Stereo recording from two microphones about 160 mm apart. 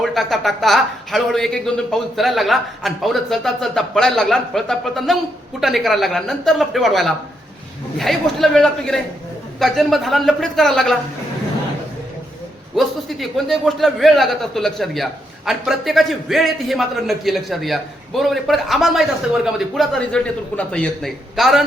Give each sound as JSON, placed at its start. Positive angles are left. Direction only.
{"t": 0.0, "sound": "a man's voice", "side_deg": 0}
{"t": 12.7, "sound": "a man's voice", "side_deg": 0}